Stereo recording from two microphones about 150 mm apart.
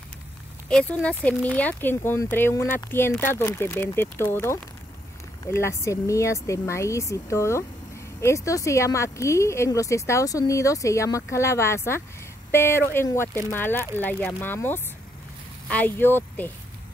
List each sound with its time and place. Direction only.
0.7 s speech: 5° left (ahead or behind)